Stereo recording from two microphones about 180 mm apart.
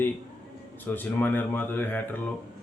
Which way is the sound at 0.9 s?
10° left (ahead or behind).